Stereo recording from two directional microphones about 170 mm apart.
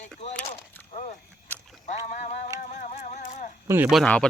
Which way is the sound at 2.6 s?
50° left (ahead or behind).